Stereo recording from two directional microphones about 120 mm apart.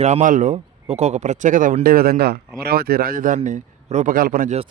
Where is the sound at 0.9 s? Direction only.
65° right (ahead or behind); by 1.8 s 90° right.